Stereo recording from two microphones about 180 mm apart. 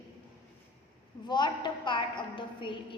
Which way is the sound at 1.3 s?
25° left (ahead or behind).